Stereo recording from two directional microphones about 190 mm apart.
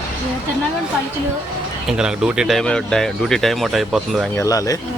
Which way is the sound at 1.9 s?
5° right (ahead or behind).